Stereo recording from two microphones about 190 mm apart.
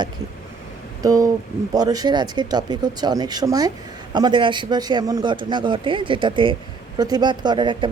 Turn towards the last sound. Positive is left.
turn(degrees=-25)  # may be behind; listen again after turning